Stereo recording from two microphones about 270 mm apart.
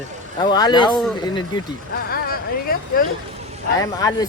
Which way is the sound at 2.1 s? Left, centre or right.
Left.